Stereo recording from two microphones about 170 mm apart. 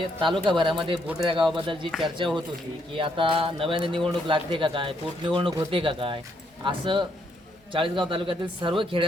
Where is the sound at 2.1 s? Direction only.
30° right (ahead or behind).